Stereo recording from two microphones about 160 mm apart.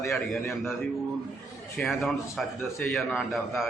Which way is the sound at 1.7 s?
Centre (ahead or behind).